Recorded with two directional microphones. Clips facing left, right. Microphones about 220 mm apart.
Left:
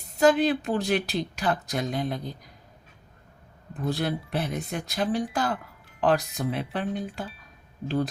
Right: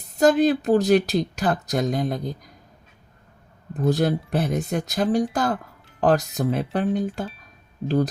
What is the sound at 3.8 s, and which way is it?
Speech, 45° right (ahead or behind).